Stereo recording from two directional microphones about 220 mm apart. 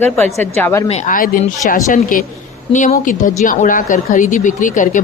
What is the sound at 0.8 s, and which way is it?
Speech, 35° left (ahead or behind).